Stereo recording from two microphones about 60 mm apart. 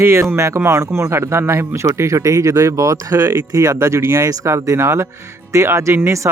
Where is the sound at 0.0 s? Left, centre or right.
Right.